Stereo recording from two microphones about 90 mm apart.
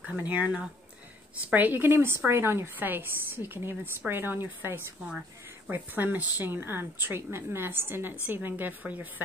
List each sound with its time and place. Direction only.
0.0 s speech: 20° right (ahead or behind)